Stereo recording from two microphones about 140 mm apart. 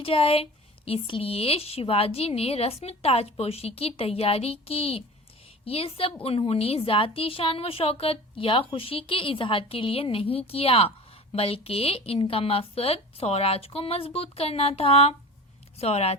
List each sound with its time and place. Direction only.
0.0 s a woman's voice: 40° left (ahead or behind)